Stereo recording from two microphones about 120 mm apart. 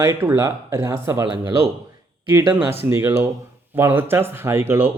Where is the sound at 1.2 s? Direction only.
40° right (ahead or behind).